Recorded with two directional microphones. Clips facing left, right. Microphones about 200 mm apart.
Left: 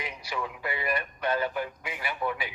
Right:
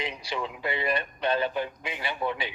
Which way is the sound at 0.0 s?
25° right (ahead or behind).